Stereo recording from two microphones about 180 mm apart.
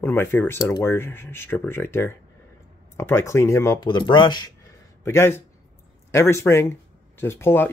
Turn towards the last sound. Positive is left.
turn(degrees=15)  # may be behind; listen again after turning